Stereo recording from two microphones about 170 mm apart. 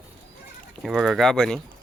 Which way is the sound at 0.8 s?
Centre (ahead or behind).